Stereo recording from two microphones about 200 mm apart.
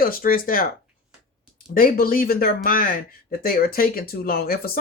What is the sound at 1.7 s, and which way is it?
Speech, 45° left (ahead or behind).